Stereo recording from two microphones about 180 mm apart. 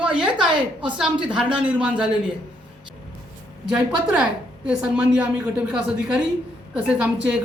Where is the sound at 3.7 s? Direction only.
5° right (ahead or behind).